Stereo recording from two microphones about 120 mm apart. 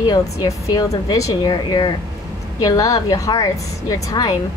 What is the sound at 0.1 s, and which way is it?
A woman's voice, 35° left (ahead or behind).